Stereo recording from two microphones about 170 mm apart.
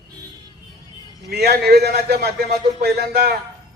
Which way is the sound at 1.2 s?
70° right (ahead or behind).